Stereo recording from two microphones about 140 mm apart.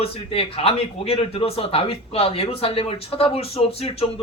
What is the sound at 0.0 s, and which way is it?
Speech, 45° left (ahead or behind).